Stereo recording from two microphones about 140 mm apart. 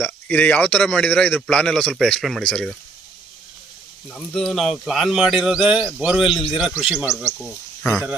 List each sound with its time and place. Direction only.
0.0 s a man's voice: 10° left (ahead or behind)
4.1 s speech: 5° left (ahead or behind)
7.1 s speech: 15° right (ahead or behind)